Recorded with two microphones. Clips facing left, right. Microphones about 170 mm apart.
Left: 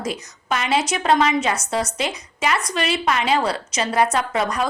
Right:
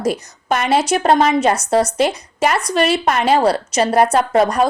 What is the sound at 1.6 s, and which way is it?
A woman's voice, 40° right (ahead or behind).